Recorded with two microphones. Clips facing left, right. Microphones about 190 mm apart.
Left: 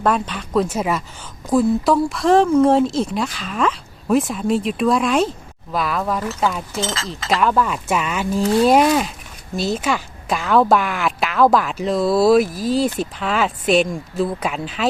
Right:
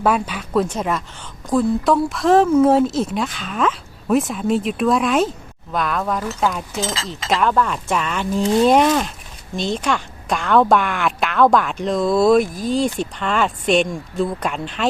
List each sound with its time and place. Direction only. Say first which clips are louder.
0.0 s a woman's voice: right 1 dB; 5° right (ahead or behind)
6.8 s speech: even; 15° right (ahead or behind)
7.3 s a woman's voice: even; centre (ahead or behind)